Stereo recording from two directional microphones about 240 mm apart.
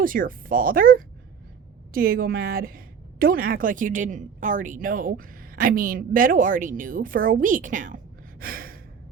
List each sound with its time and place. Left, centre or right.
0.0 s a woman's voice: right